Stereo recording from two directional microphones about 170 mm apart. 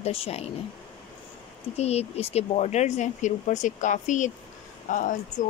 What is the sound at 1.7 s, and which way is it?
Speech, 40° left (ahead or behind).